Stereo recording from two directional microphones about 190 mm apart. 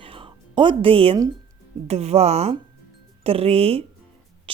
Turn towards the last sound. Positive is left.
turn(degrees=-30)  # may be behind; listen again after turning